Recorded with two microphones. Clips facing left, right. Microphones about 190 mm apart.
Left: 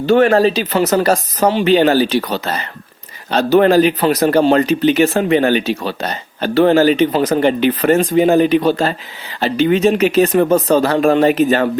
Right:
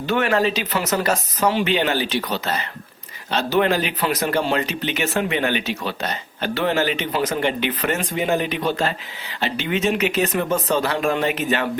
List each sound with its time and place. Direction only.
0.0 s speech: 35° left (ahead or behind)